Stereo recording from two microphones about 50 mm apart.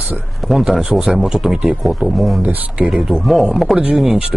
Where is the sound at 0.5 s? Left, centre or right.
Centre.